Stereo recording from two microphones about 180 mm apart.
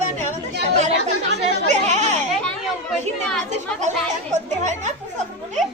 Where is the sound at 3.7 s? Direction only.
40° right (ahead or behind).